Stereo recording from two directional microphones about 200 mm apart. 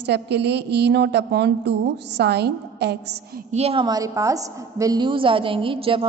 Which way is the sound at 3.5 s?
30° right (ahead or behind).